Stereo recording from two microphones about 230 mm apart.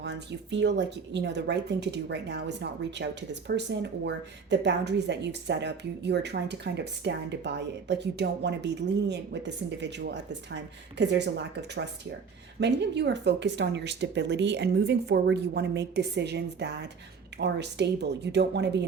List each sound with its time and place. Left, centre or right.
0.0 s speech: right
12.5 s speech: right